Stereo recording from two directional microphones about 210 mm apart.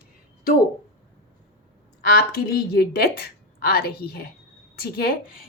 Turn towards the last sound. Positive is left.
turn(degrees=45)  # may be behind; listen again after turning